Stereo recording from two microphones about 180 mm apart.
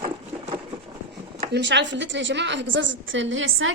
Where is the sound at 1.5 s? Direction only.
75° right (ahead or behind).